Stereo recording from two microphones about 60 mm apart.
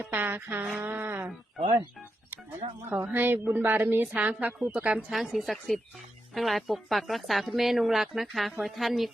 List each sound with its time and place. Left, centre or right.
0.1 s a sound: right
2.9 s a woman's voice: right
5.1 s speech: centre